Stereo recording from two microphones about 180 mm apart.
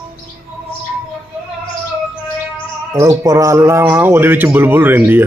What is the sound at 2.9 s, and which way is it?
A man's voice, 20° right (ahead or behind).